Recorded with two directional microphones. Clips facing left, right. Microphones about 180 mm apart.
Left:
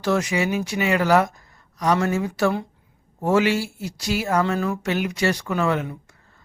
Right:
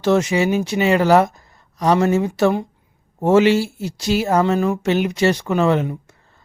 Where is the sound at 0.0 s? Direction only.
25° right (ahead or behind).